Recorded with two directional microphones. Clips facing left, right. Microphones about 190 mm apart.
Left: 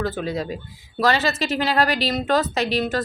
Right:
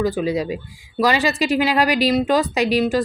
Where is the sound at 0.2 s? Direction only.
10° right (ahead or behind).